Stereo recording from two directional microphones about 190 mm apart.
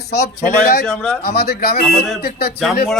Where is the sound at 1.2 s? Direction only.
55° left (ahead or behind).